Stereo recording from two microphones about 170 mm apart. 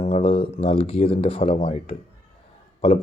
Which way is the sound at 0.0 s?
35° left (ahead or behind).